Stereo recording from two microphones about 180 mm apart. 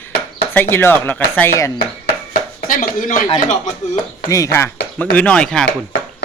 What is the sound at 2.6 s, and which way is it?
Speech, 50° left (ahead or behind).